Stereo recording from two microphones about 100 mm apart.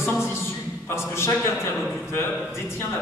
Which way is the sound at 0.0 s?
25° left (ahead or behind).